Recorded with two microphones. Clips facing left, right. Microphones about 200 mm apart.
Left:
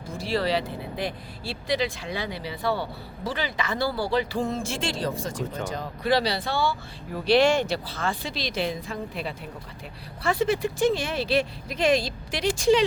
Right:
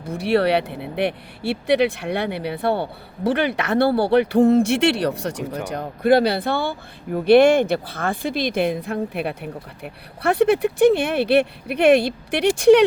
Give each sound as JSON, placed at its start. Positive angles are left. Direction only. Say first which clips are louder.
{"t": 0.0, "sound": "speech", "louder": "right 8 dB", "side_deg": -65}